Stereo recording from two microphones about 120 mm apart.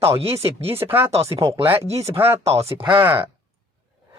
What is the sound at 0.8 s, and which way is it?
Speech, 30° right (ahead or behind).